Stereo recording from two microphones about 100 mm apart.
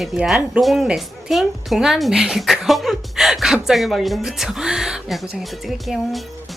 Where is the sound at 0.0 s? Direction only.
5° right (ahead or behind).